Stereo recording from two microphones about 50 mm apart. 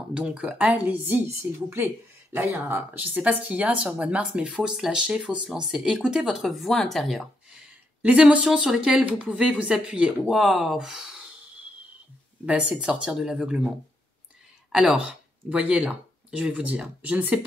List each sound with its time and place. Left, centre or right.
0.1 s speech: centre
1.5 s speech: right; by 6.3 s centre
6.3 s a woman's voice: centre
8.0 s speech: right
8.5 s speech: centre
10.2 s a woman's voice: centre
12.4 s speech: right
12.7 s speech: centre
14.9 s speech: right